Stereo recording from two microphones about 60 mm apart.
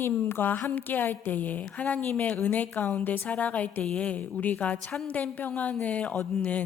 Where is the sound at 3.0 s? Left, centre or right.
Left.